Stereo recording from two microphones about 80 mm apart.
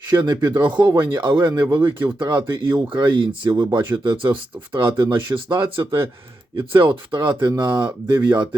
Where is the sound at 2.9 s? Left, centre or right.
Right.